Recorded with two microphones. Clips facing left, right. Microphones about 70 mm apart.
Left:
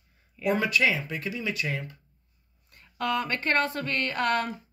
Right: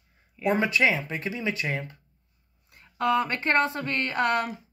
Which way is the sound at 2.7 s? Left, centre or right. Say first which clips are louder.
Right 4 dB; centre.